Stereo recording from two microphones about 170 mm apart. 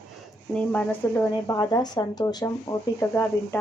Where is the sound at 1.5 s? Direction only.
20° left (ahead or behind).